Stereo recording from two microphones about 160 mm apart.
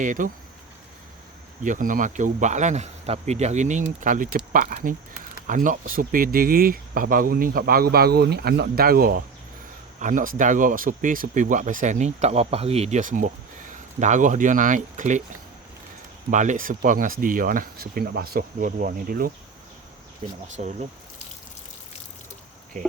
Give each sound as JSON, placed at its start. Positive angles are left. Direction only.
{"t": 0.0, "sound": "speech", "side_deg": -55}
{"t": 1.6, "sound": "speech", "side_deg": -55}
{"t": 10.0, "sound": "speech", "side_deg": -55}
{"t": 16.3, "sound": "speech", "side_deg": -50}
{"t": 20.2, "sound": "speech", "side_deg": -40}